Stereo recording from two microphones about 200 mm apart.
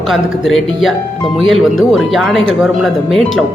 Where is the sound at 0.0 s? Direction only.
Centre (ahead or behind).